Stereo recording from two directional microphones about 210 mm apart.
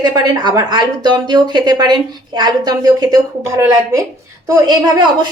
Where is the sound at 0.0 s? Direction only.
20° right (ahead or behind).